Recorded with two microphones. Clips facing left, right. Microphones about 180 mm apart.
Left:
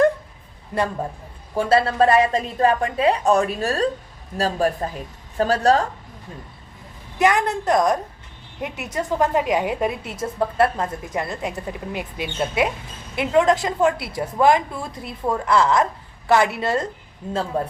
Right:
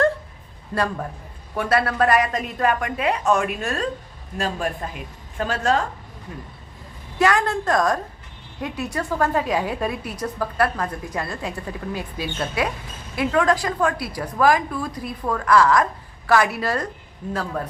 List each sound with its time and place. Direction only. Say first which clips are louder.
0.7 s a woman's voice: left 1 dB; 20° left (ahead or behind); by 5.8 s 35° left (ahead or behind)
7.2 s a woman's voice: left 1 dB; 20° left (ahead or behind)